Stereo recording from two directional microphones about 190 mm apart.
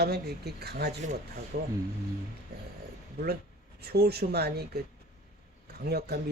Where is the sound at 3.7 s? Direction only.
55° right (ahead or behind).